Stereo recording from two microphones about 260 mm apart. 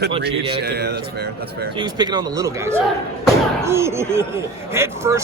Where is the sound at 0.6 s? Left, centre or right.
Right.